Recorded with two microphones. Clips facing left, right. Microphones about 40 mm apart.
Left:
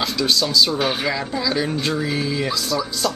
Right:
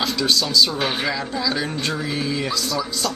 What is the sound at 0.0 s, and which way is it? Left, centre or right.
Speech, centre.